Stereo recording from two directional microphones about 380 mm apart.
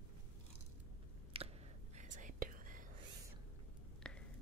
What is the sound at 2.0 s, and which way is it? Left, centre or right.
Whispering, right.